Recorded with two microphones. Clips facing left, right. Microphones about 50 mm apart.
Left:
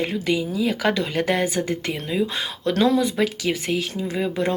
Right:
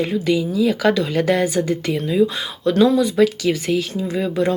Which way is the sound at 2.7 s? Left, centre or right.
Left.